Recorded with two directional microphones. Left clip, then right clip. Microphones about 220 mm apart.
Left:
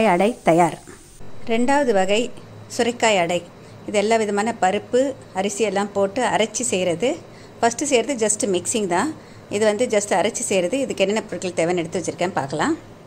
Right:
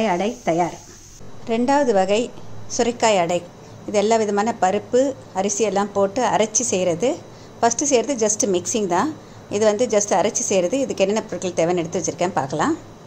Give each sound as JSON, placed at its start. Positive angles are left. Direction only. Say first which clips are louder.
{"t": 0.0, "sound": "speech", "louder": "left 4 dB", "side_deg": 30}
{"t": 1.4, "sound": "a woman's voice", "louder": "right 1 dB", "side_deg": 0}